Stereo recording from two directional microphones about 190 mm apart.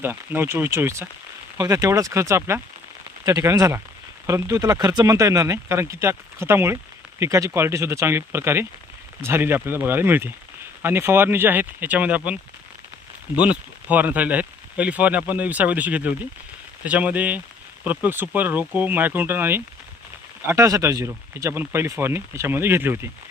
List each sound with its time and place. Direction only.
0.0 s speech: 10° right (ahead or behind)
13.4 s speech: 5° right (ahead or behind)